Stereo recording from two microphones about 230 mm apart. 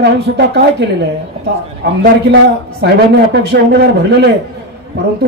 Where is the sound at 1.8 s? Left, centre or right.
Right.